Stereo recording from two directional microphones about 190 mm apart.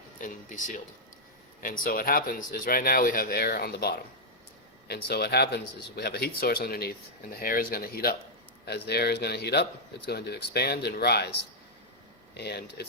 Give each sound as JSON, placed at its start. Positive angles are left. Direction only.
{"t": 0.2, "sound": "speech", "side_deg": 40}
{"t": 12.3, "sound": "speech", "side_deg": 60}